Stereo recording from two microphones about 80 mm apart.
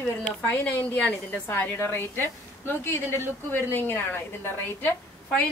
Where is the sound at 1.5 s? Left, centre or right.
Left.